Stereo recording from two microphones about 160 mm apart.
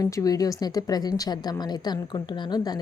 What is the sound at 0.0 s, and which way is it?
A woman's voice, 20° left (ahead or behind).